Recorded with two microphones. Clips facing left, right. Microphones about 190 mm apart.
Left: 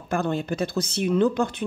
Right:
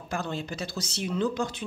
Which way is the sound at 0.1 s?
55° left (ahead or behind).